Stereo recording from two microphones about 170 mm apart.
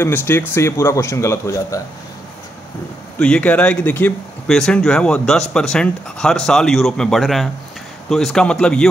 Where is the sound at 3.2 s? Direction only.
5° left (ahead or behind).